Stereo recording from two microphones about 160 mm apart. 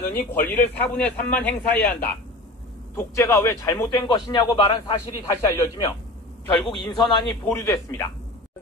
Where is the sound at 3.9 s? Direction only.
30° left (ahead or behind).